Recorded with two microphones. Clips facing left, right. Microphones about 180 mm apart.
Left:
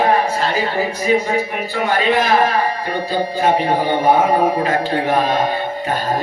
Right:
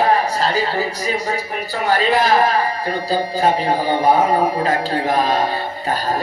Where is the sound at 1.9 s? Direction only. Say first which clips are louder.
Right 1 dB; 35° right (ahead or behind).